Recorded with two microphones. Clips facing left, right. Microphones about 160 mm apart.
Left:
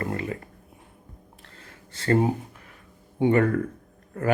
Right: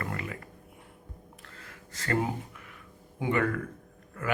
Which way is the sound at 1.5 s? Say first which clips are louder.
Left 1 dB; 30° left (ahead or behind).